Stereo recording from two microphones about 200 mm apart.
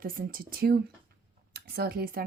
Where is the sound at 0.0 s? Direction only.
45° right (ahead or behind).